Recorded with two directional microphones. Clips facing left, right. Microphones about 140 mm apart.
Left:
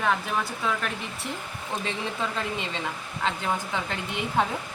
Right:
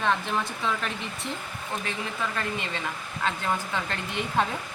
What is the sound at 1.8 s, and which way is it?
Speech, 20° left (ahead or behind).